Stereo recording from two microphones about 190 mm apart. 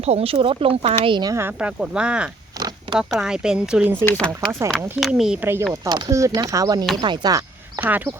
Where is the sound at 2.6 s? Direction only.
20° right (ahead or behind).